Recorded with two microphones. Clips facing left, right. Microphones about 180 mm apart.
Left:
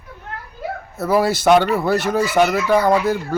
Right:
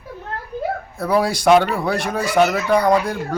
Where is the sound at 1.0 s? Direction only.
5° left (ahead or behind).